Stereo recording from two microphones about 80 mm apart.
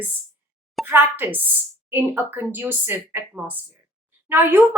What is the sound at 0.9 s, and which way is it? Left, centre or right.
Speech, right.